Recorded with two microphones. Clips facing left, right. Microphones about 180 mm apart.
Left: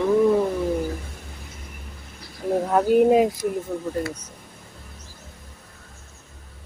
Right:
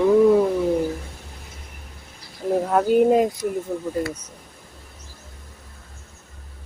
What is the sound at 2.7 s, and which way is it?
Speech, centre (ahead or behind).